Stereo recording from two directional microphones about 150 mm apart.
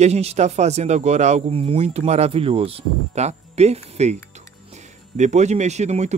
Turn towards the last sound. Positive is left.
turn(degrees=-50)  # may be behind; listen again after turning